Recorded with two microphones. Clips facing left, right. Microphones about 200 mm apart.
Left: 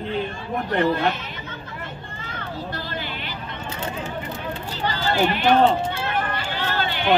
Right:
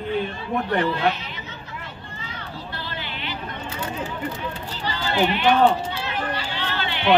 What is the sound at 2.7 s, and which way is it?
Music, 45° left (ahead or behind).